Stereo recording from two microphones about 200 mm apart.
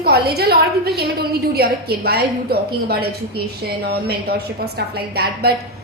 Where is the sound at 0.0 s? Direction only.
50° right (ahead or behind).